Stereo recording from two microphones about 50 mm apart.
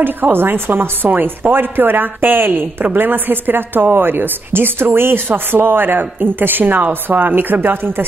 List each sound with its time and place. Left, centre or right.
0.0 s speech: right